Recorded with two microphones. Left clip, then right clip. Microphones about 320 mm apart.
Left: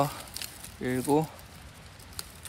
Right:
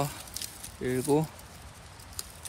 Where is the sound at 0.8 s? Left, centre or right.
Left.